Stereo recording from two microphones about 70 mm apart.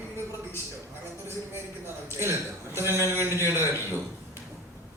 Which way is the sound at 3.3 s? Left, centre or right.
Right.